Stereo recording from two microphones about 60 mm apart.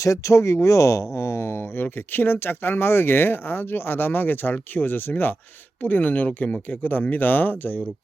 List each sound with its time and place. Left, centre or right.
0.0 s speech: left